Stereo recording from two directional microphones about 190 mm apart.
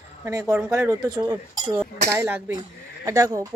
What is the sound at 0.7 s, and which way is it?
Speech, 20° right (ahead or behind).